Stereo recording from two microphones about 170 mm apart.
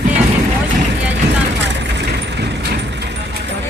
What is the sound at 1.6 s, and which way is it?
Vehicle, 90° right.